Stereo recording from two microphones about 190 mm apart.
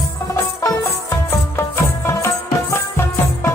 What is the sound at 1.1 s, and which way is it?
Music, 15° left (ahead or behind).